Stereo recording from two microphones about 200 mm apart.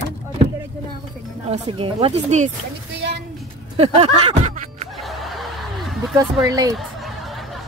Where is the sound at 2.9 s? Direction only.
55° right (ahead or behind).